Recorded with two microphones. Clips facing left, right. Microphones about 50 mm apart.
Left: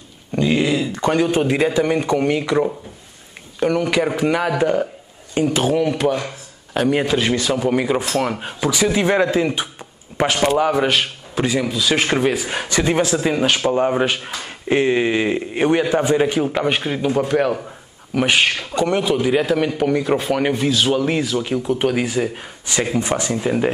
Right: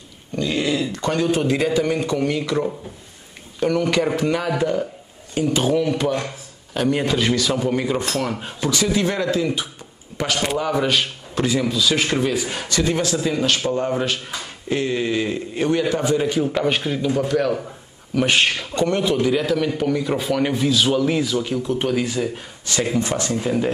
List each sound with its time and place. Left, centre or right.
0.4 s a sound: centre
0.9 s speech: left
3.5 s speech: centre; by 4.8 s left
5.5 s a man's voice: centre
8.9 s speech: left
10.8 s speech: centre
18.1 s speech: centre